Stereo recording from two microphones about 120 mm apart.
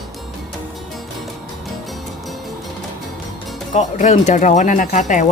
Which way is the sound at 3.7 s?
85° left.